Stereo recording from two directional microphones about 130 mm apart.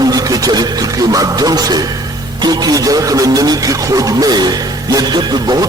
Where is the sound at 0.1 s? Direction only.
30° right (ahead or behind).